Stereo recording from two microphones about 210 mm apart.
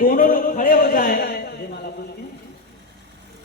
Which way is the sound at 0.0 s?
40° left (ahead or behind).